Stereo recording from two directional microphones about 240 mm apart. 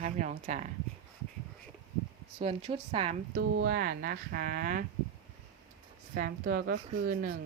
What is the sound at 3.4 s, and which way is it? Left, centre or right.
A woman's voice, right.